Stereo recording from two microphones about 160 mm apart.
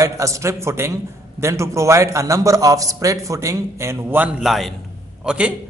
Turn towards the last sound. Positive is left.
turn(degrees=-5)  # may be behind; listen again after turning